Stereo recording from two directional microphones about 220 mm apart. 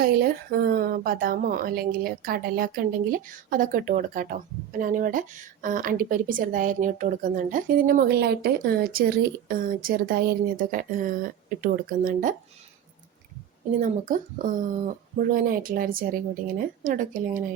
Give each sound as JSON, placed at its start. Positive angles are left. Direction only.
{"t": 0.0, "sound": "a woman's voice", "side_deg": -45}
{"t": 13.7, "sound": "a woman's voice", "side_deg": -35}